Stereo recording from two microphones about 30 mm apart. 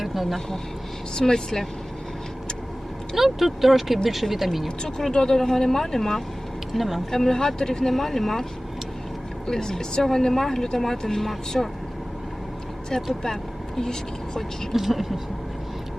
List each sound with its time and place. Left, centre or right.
0.0 s vehicle: centre
1.2 s speech: centre
3.2 s speech: centre
5.1 s speech: left
5.4 s speech: centre
6.7 s speech: centre
7.1 s speech: centre
7.9 s speech: centre
9.5 s speech: centre
11.6 s speech: centre
13.1 s speech: centre
14.7 s speech: centre